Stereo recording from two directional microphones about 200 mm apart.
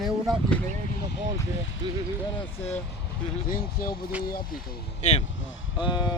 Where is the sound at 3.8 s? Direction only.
45° left (ahead or behind).